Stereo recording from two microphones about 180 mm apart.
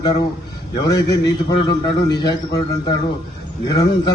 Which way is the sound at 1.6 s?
25° left (ahead or behind).